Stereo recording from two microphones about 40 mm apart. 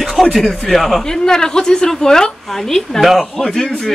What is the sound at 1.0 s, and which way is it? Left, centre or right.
A woman's voice, centre.